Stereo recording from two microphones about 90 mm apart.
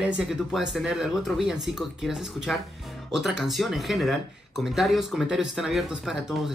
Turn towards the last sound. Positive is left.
turn(degrees=-5)  # may be behind; listen again after turning